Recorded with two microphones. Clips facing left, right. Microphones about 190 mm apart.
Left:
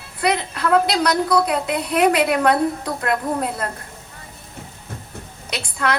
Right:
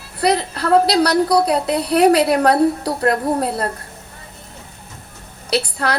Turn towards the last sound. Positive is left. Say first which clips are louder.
# right 4 dB
turn(degrees=-35)  # may be behind; listen again after turning